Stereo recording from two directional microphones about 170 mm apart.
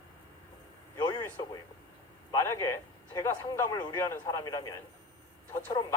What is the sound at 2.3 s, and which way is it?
Speech, 15° left (ahead or behind).